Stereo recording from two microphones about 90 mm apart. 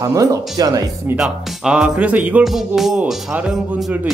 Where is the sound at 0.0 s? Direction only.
40° right (ahead or behind).